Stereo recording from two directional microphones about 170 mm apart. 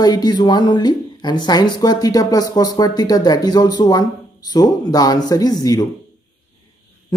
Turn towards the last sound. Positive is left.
turn(degrees=20)  # may be behind; listen again after turning